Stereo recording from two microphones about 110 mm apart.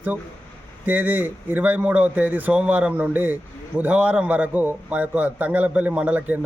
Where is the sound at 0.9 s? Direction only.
15° right (ahead or behind).